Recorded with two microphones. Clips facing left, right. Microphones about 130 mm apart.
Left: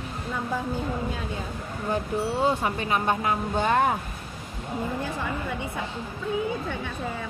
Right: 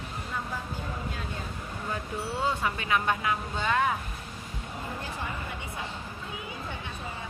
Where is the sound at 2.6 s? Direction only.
35° left (ahead or behind).